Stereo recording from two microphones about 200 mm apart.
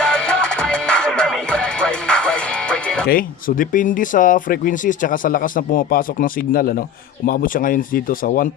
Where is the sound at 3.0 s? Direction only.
45° left (ahead or behind).